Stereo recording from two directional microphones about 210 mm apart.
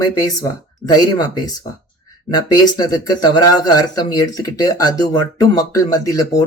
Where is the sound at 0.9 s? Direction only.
20° left (ahead or behind).